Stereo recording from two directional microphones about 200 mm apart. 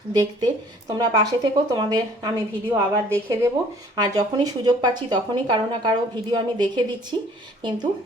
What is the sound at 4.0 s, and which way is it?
Speech, 20° right (ahead or behind).